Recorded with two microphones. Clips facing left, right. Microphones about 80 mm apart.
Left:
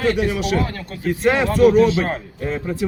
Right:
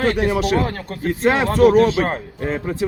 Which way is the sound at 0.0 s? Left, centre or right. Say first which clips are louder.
Right 1 dB; right.